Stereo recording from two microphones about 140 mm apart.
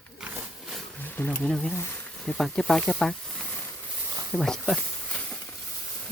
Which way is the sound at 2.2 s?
Centre (ahead or behind).